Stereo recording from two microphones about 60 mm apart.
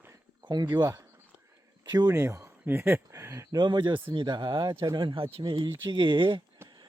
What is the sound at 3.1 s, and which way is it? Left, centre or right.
Speech, right.